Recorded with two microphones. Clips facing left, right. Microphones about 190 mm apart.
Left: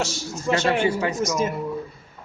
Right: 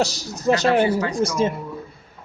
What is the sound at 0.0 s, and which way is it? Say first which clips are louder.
Speech: right 5 dB; 35° right (ahead or behind).